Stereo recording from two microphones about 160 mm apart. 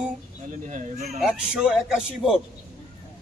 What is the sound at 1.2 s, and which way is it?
Speech, 5° right (ahead or behind).